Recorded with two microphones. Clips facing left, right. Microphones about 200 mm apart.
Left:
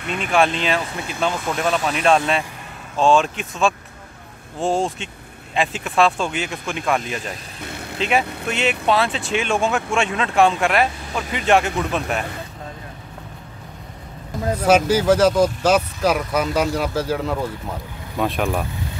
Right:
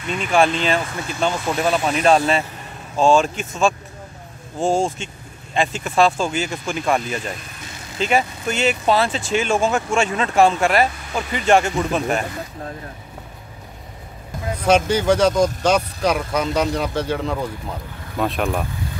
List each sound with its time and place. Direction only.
0.3 s speech: centre (ahead or behind)
7.6 s vehicle: 60° left (ahead or behind)
8.0 s speech: centre (ahead or behind)
14.6 s speech: 5° left (ahead or behind)